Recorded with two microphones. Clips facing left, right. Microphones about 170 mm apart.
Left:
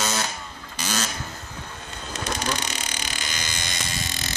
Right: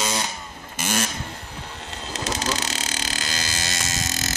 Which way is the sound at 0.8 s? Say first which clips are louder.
Right 3 dB; 50° right (ahead or behind).